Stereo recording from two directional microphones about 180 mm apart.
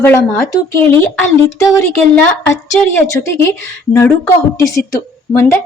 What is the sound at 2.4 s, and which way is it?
Speech, 10° left (ahead or behind).